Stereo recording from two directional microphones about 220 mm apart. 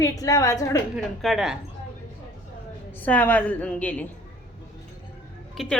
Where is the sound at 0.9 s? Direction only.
Centre (ahead or behind).